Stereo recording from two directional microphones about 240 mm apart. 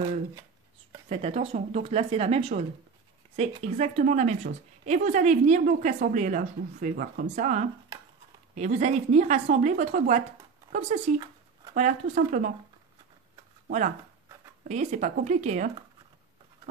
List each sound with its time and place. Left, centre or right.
1.0 s a woman's voice: right
13.7 s speech: right